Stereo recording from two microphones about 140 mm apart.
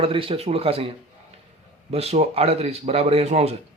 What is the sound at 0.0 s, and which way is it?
A man's voice, 40° right (ahead or behind).